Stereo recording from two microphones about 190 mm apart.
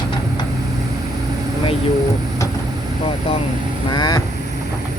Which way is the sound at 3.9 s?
20° left (ahead or behind).